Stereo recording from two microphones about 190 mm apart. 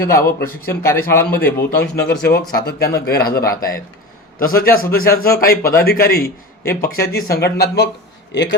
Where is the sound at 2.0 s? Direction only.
60° left (ahead or behind).